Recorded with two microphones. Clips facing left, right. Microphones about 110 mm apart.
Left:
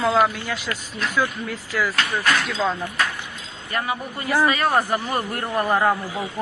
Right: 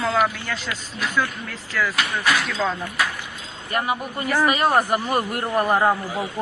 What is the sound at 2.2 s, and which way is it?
Speech, 5° right (ahead or behind).